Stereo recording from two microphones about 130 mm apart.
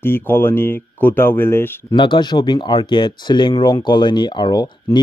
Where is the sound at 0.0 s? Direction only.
15° left (ahead or behind).